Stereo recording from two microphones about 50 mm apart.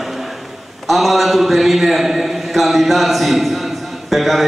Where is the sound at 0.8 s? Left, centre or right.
Centre.